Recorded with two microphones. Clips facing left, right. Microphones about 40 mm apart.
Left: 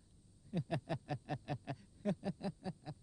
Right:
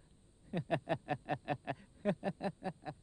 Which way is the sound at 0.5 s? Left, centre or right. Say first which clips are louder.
Right 4 dB; right.